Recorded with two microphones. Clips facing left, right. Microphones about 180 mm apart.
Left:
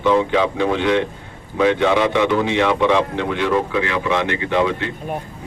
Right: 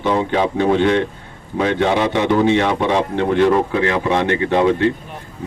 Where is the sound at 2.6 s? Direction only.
45° right (ahead or behind).